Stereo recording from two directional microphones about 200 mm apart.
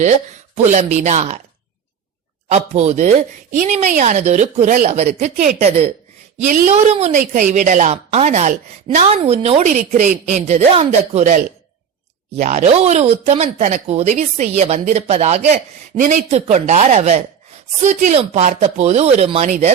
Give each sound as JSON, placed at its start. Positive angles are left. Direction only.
{"t": 0.5, "sound": "speech", "side_deg": -35}
{"t": 2.5, "sound": "speech", "side_deg": -35}